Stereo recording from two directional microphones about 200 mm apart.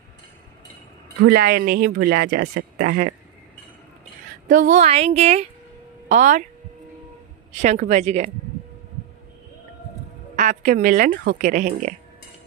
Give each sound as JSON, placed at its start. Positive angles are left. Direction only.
{"t": 1.2, "sound": "speech", "side_deg": -50}
{"t": 4.5, "sound": "a woman's voice", "side_deg": -40}
{"t": 7.5, "sound": "a woman's voice", "side_deg": -35}
{"t": 10.3, "sound": "a woman's voice", "side_deg": -35}